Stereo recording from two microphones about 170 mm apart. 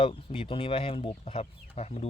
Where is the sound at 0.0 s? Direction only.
35° left (ahead or behind).